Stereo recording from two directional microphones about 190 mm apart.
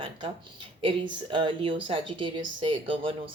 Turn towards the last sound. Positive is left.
turn(degrees=-30)  # may be behind; listen again after turning